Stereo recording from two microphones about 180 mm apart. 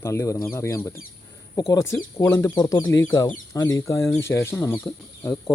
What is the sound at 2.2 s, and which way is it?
Speech, 15° left (ahead or behind).